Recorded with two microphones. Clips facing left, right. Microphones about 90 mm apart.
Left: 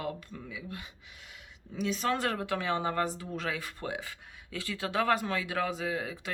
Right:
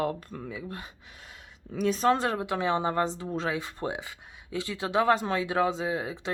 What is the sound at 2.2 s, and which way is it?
Speech, 20° right (ahead or behind).